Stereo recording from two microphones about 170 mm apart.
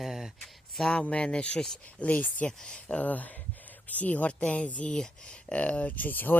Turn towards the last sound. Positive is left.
turn(degrees=10)  # may be behind; listen again after turning